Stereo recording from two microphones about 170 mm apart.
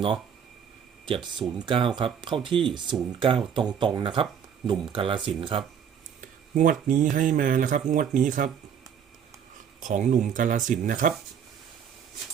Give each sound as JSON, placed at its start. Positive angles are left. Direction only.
{"t": 1.0, "sound": "speech", "side_deg": -30}
{"t": 6.5, "sound": "speech", "side_deg": -50}
{"t": 9.8, "sound": "speech", "side_deg": -45}